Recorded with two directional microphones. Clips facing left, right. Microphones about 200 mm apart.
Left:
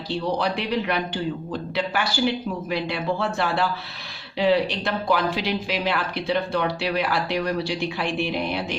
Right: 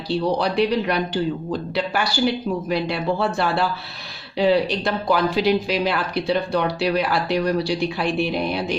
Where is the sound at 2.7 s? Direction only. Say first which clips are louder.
Right 2 dB; 35° right (ahead or behind).